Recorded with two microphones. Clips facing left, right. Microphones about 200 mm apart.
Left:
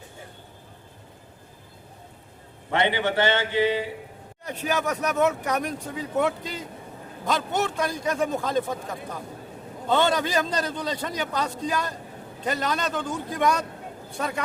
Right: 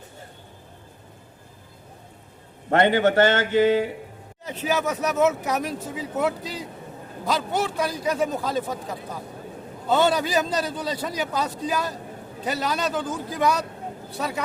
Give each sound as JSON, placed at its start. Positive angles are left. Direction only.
{"t": 2.6, "sound": "a man's voice", "side_deg": -45}
{"t": 4.4, "sound": "a man's voice", "side_deg": -5}